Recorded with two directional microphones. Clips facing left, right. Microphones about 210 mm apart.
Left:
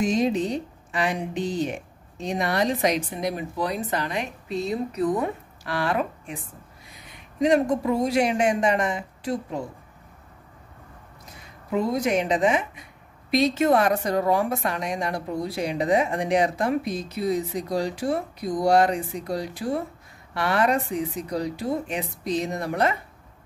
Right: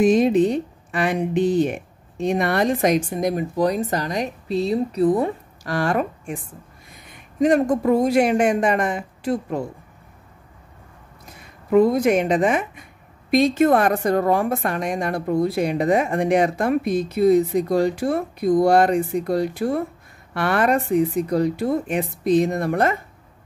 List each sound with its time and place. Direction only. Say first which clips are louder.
0.0 s speech: right 7 dB; 55° right (ahead or behind)
11.2 s a woman's voice: right 7 dB; 55° right (ahead or behind)